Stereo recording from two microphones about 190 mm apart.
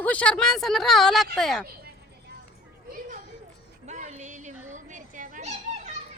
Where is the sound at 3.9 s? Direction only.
40° right (ahead or behind).